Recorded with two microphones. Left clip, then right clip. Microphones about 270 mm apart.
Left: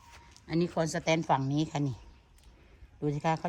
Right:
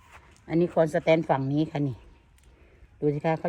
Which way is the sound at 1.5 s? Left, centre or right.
Left.